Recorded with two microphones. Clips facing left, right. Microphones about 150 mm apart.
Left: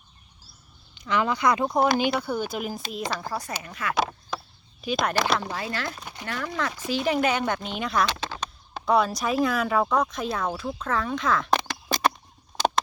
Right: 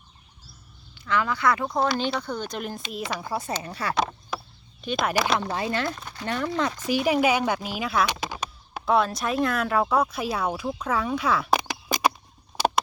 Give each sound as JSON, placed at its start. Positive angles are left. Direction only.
{"t": 0.9, "sound": "speech", "side_deg": 20}
{"t": 3.6, "sound": "speech", "side_deg": -35}
{"t": 4.3, "sound": "a sound", "side_deg": -5}
{"t": 4.8, "sound": "speech", "side_deg": 0}
{"t": 5.5, "sound": "speech", "side_deg": -25}
{"t": 8.9, "sound": "speech", "side_deg": 0}
{"t": 12.5, "sound": "a sound", "side_deg": -10}